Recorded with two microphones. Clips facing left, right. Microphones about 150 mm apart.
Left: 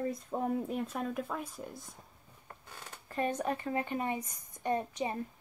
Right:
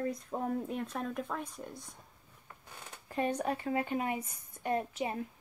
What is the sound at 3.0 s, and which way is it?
Speech, 10° right (ahead or behind).